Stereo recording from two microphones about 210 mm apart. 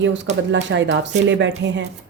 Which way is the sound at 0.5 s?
60° right (ahead or behind).